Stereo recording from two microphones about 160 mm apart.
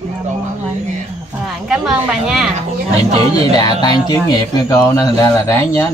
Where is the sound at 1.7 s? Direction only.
Centre (ahead or behind).